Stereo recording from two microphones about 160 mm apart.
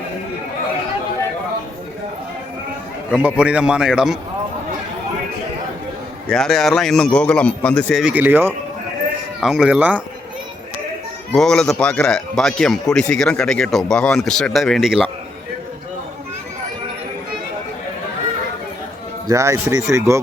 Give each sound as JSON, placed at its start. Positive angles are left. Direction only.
{"t": 3.1, "sound": "a man's voice", "side_deg": -10}
{"t": 6.2, "sound": "speech", "side_deg": 5}
{"t": 8.0, "sound": "a man's voice", "side_deg": -10}
{"t": 11.3, "sound": "speech", "side_deg": 5}
{"t": 19.3, "sound": "speech", "side_deg": -20}